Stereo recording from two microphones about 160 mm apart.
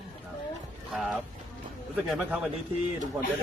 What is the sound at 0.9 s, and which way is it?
A man's voice, centre (ahead or behind).